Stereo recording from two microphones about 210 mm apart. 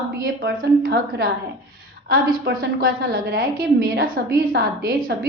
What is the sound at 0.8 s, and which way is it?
A woman's voice, 45° right (ahead or behind).